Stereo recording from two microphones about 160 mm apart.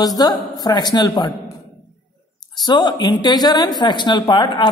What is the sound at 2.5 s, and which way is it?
A woman's voice, 25° left (ahead or behind).